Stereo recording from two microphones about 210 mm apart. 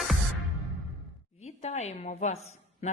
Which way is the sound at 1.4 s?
30° left (ahead or behind).